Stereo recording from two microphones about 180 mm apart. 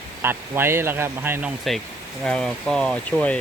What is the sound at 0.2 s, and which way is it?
Speech, 10° right (ahead or behind).